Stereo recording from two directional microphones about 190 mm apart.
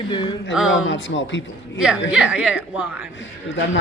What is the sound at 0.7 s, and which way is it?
Speech, 75° left (ahead or behind).